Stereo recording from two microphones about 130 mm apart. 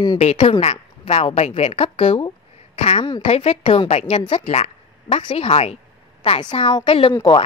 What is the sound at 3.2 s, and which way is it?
Speech, 55° left (ahead or behind).